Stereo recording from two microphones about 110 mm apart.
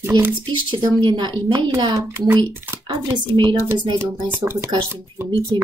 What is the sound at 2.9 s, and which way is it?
Speech, 45° right (ahead or behind).